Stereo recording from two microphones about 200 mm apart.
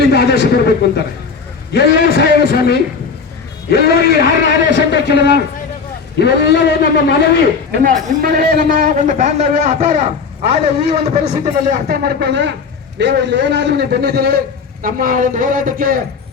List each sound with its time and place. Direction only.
0.0 s a man's voice: 55° left (ahead or behind)
7.7 s a man's voice: 50° right (ahead or behind)
11.9 s a man's voice: 55° right (ahead or behind)